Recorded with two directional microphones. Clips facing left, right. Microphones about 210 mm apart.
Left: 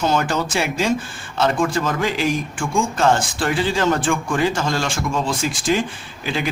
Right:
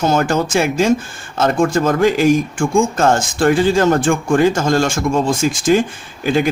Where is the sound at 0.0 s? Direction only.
45° right (ahead or behind).